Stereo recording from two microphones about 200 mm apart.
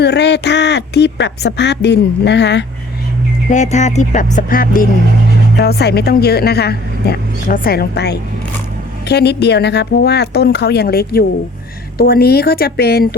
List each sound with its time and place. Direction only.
0.0 s a woman's voice: 60° left (ahead or behind)
3.5 s a woman's voice: 35° left (ahead or behind); by 13.1 s 50° left (ahead or behind)